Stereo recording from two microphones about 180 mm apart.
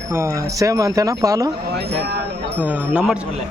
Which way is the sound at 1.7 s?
65° right (ahead or behind).